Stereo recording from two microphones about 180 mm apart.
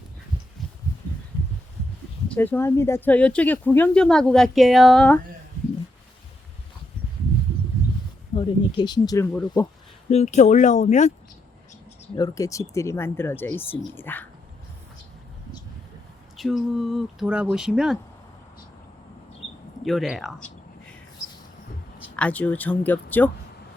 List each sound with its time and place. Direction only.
2.3 s speech: 10° left (ahead or behind)
8.4 s speech: 30° left (ahead or behind)
10.1 s speech: 40° left (ahead or behind)
12.1 s speech: 20° left (ahead or behind)
16.4 s speech: centre (ahead or behind)
19.8 s speech: centre (ahead or behind)
22.1 s speech: 5° left (ahead or behind)